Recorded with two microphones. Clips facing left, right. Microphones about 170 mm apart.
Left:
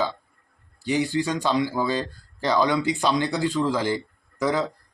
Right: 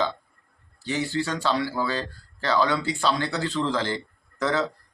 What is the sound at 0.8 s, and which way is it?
Speech, 15° left (ahead or behind).